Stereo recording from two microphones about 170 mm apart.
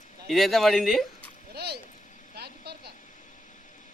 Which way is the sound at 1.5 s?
70° right (ahead or behind).